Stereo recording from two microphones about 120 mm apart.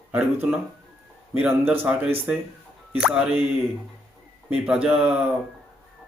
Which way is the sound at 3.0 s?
10° right (ahead or behind).